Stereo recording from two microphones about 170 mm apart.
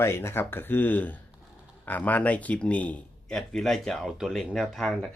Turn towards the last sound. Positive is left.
turn(degrees=5)  # may be behind; listen again after turning